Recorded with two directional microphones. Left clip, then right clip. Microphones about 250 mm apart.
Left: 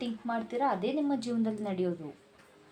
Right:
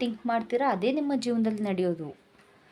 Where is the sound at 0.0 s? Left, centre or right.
Right.